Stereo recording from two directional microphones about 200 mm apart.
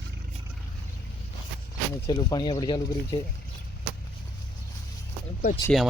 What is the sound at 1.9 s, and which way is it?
Speech, 20° left (ahead or behind).